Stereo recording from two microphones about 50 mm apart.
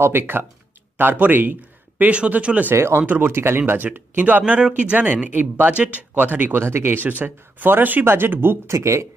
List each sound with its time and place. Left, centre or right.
0.2 s speech: right
2.0 s speech: right
2.7 s speech: right
3.0 s speech: right
3.7 s speech: right
4.6 s speech: right
5.1 s speech: right
6.6 s speech: right
8.6 s speech: right